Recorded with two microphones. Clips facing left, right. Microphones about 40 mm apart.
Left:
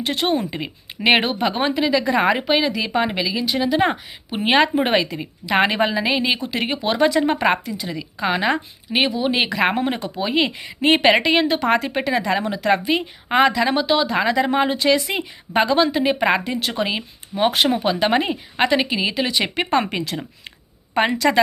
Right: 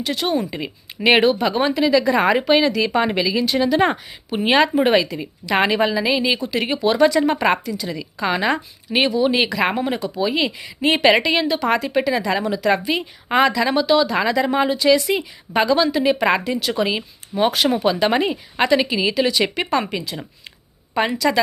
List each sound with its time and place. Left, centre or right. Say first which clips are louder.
0.0 s speech: left 1 dB; left
0.3 s speech: right 1 dB; left; by 3.9 s centre
4.4 s speech: right 1 dB; left
7.9 s speech: even; centre
9.4 s speech: even; left
16.6 s speech: right 2 dB; left
16.8 s speech: right 2 dB; centre
20.9 s speech: left 1 dB; left